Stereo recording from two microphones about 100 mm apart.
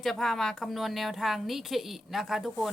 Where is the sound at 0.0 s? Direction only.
Centre (ahead or behind).